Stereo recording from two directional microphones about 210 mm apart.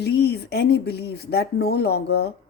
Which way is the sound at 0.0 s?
50° left (ahead or behind).